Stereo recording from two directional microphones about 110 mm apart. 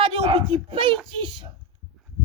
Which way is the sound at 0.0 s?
55° right (ahead or behind).